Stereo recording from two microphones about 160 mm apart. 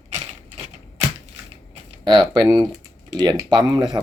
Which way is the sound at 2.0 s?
25° right (ahead or behind).